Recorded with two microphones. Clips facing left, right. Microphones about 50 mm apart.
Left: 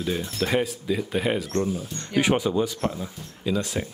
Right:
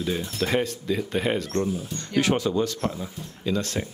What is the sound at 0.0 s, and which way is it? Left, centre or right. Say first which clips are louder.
Speech: even; centre.